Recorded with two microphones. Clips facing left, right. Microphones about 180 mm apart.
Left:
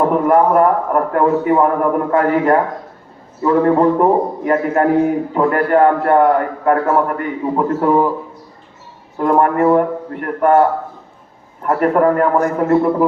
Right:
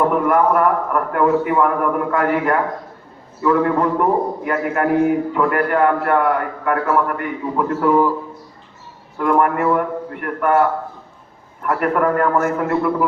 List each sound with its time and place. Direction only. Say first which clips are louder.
0.3 s a man's voice: left 6 dB; 30° left (ahead or behind)
9.1 s a man's voice: left 3 dB; 30° left (ahead or behind)